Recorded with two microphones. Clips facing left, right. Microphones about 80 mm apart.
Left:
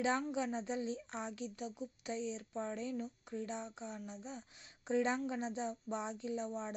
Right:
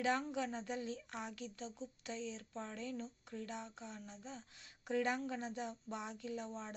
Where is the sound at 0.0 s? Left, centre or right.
Centre.